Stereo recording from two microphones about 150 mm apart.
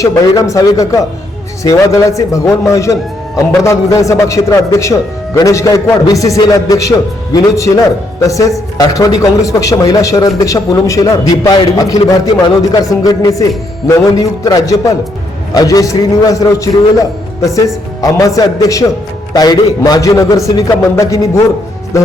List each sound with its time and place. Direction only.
0.0 s a man's voice: 20° left (ahead or behind)
12.9 s a man's voice: 20° left (ahead or behind)